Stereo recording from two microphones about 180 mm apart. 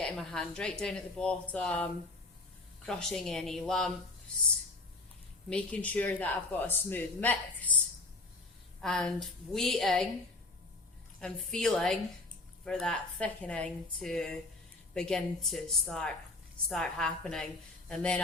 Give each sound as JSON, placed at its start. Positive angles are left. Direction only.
{"t": 0.0, "sound": "speech", "side_deg": 5}
{"t": 5.5, "sound": "a man's voice", "side_deg": 5}
{"t": 8.8, "sound": "speech", "side_deg": 5}
{"t": 11.2, "sound": "speech", "side_deg": 5}